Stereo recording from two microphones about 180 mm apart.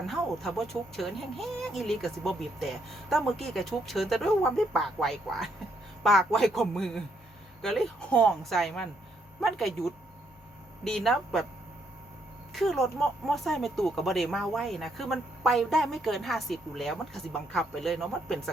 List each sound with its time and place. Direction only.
0.1 s speech: centre (ahead or behind)
12.5 s speech: centre (ahead or behind)